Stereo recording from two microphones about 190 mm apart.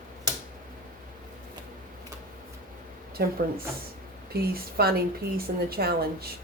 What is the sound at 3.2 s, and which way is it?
Speech, 55° right (ahead or behind).